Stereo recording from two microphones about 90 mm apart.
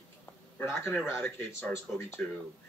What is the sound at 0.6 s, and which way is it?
Speech, 30° left (ahead or behind).